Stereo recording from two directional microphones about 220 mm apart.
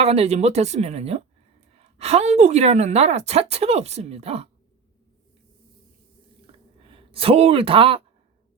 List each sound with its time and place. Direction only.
0.0 s a woman's voice: 30° right (ahead or behind)
6.8 s speech: 25° right (ahead or behind)